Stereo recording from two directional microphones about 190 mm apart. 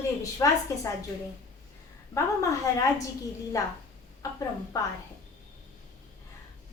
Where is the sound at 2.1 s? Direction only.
15° left (ahead or behind).